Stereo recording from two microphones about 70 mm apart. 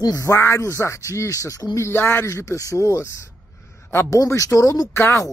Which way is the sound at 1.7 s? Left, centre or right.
Left.